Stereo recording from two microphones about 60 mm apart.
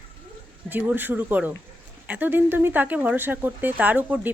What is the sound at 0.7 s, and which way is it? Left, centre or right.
Speech, right.